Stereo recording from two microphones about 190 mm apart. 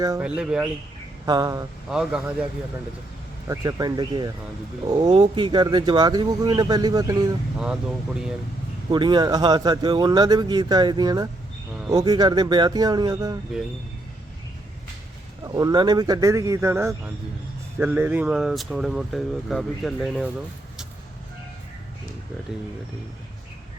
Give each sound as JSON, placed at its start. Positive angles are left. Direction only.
{"t": 0.2, "sound": "speech", "side_deg": -5}
{"t": 1.2, "sound": "speech", "side_deg": -20}
{"t": 1.9, "sound": "speech", "side_deg": -5}
{"t": 3.4, "sound": "speech", "side_deg": -15}
{"t": 7.6, "sound": "speech", "side_deg": -5}
{"t": 8.9, "sound": "speech", "side_deg": -25}
{"t": 15.4, "sound": "speech", "side_deg": -20}